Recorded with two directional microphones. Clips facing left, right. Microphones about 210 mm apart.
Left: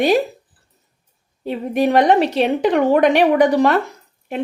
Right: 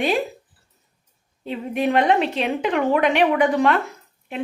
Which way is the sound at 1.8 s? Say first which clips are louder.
Left 4 dB; 40° left (ahead or behind).